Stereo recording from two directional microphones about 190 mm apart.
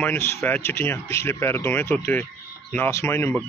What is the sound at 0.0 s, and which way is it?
Speech, 10° left (ahead or behind).